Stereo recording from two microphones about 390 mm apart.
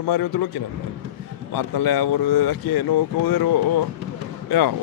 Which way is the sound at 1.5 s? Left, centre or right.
Left.